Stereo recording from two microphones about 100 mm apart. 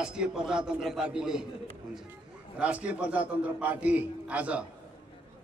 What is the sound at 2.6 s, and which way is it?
A man's voice, 10° right (ahead or behind).